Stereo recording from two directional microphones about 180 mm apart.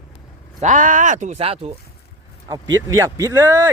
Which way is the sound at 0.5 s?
45° right (ahead or behind).